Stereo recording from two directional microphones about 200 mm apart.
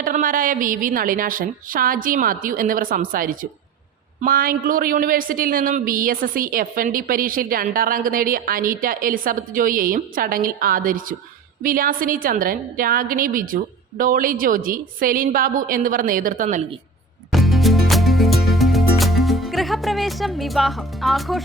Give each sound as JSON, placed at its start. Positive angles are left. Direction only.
{"t": 0.0, "sound": "a woman's voice", "side_deg": -45}
{"t": 17.3, "sound": "music", "side_deg": 0}